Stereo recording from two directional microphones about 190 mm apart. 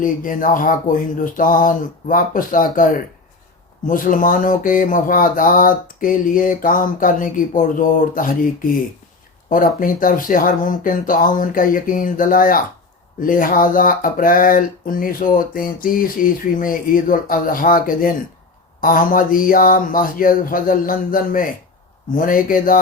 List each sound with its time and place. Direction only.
0.0 s speech: 45° left (ahead or behind)
9.8 s speech: 45° left (ahead or behind)